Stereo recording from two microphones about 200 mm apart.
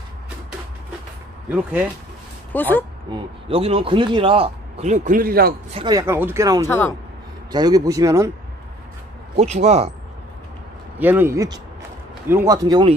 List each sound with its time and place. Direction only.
1.5 s speech: 10° right (ahead or behind)
2.5 s speech: 10° left (ahead or behind)
3.1 s a man's voice: 25° right (ahead or behind); by 5.5 s 50° right (ahead or behind)
5.8 s speech: 20° right (ahead or behind)
6.6 s speech: 10° left (ahead or behind)
7.5 s speech: 20° right (ahead or behind)
9.4 s speech: 30° right (ahead or behind)
11.0 s speech: 10° right (ahead or behind)